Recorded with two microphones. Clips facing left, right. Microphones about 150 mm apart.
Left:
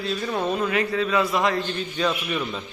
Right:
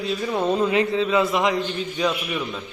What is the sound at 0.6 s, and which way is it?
A man's voice, 20° right (ahead or behind).